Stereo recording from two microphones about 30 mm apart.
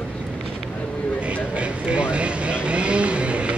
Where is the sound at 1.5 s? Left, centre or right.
Right.